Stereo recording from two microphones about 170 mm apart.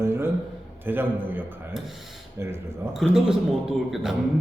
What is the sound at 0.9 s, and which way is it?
A man's voice, 10° right (ahead or behind).